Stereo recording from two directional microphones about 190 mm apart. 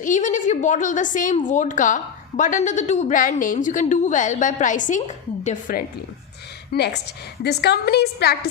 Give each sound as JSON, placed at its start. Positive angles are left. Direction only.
{"t": 0.0, "sound": "a woman's voice", "side_deg": 40}
{"t": 6.7, "sound": "a woman's voice", "side_deg": 60}